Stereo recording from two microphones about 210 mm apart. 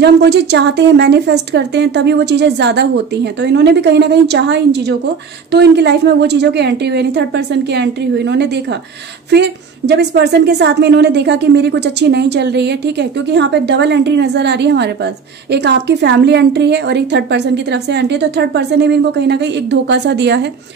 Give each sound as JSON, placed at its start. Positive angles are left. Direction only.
{"t": 0.0, "sound": "a woman's voice", "side_deg": -55}